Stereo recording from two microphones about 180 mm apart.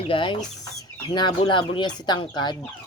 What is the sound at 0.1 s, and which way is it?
Speech, 25° left (ahead or behind).